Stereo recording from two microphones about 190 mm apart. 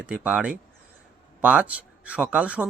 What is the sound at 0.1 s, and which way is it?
A man's voice, 5° right (ahead or behind).